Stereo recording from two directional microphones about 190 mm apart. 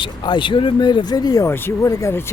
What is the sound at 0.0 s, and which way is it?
Speech, 25° left (ahead or behind).